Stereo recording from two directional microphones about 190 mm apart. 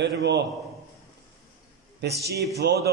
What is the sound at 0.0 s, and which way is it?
Speech, 65° right (ahead or behind).